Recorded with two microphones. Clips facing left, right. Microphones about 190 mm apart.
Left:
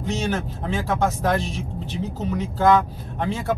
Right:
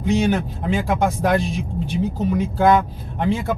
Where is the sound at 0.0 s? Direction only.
15° right (ahead or behind).